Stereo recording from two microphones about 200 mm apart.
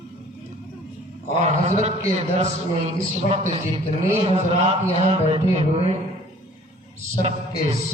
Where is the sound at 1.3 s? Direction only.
35° right (ahead or behind).